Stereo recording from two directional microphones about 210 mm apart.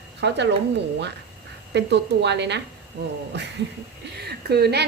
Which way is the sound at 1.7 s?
55° right (ahead or behind).